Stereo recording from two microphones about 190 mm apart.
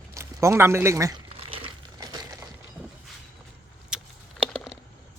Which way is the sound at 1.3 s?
30° right (ahead or behind).